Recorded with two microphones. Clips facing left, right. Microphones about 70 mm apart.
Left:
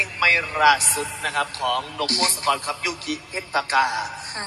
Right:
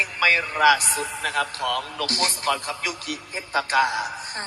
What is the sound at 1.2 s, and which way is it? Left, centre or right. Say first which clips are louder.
Speech: left 2 dB; left.